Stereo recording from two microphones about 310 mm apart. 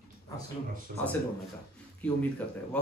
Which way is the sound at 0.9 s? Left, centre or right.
Right.